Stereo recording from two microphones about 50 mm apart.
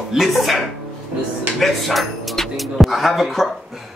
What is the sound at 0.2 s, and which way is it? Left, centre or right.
Speech, centre.